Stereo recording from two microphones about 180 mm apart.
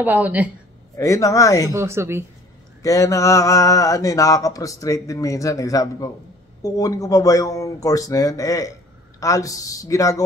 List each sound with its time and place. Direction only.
0.0 s a woman's voice: 10° right (ahead or behind)
0.9 s speech: 15° left (ahead or behind)
1.7 s a woman's voice: 15° right (ahead or behind)
2.8 s a sound: 20° left (ahead or behind)
6.6 s speech: 20° left (ahead or behind)